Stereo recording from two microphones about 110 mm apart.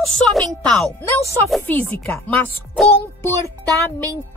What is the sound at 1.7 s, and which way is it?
Speech, 15° left (ahead or behind).